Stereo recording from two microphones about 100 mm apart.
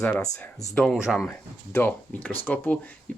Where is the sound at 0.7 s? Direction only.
10° left (ahead or behind).